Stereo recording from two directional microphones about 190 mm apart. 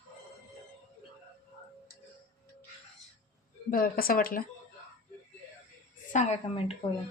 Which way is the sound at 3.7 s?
50° left (ahead or behind).